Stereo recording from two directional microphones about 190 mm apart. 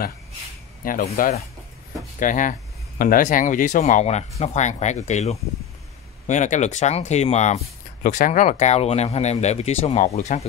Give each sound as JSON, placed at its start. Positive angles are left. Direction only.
{"t": 0.8, "sound": "speech", "side_deg": 45}